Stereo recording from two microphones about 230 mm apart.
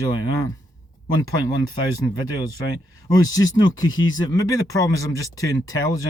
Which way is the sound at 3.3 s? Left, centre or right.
Centre.